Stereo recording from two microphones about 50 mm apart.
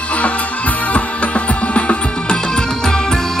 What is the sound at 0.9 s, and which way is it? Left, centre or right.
Music, left.